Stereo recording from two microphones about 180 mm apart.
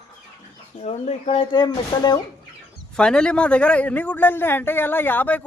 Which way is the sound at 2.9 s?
5° left (ahead or behind).